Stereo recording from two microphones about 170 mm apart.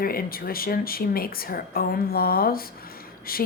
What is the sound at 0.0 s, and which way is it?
A woman's voice, 60° left (ahead or behind).